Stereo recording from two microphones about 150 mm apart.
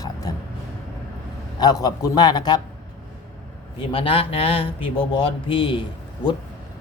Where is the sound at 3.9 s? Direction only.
40° left (ahead or behind).